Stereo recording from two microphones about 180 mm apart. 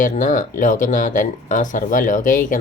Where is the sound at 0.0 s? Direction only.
45° left (ahead or behind).